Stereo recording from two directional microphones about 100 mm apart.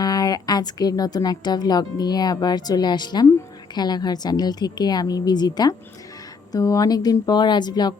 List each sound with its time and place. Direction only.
0.0 s a woman's voice: 40° left (ahead or behind)